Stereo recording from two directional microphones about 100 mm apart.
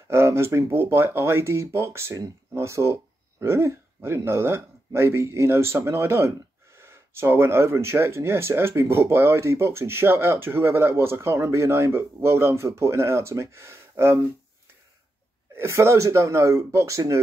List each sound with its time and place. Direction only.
0.1 s speech: 25° right (ahead or behind)
15.5 s speech: 25° right (ahead or behind)